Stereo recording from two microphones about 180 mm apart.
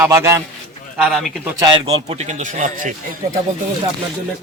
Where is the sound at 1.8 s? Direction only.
35° right (ahead or behind).